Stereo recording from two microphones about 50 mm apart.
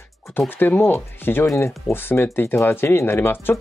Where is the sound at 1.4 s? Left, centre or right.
Left.